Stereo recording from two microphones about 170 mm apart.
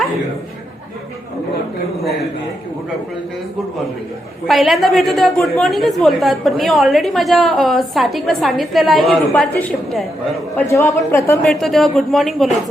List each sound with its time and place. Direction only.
4.4 s a woman's voice: centre (ahead or behind)
10.7 s a woman's voice: 15° left (ahead or behind)
11.6 s a woman's voice: centre (ahead or behind)